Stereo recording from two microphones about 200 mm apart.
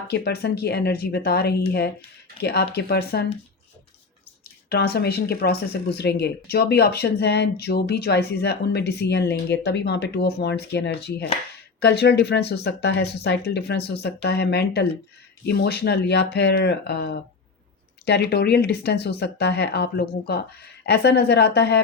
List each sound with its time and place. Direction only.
0.1 s speech: 55° left (ahead or behind)
4.7 s speech: 55° left (ahead or behind)